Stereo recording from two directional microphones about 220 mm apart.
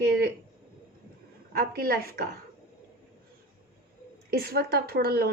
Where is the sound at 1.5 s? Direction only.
45° right (ahead or behind).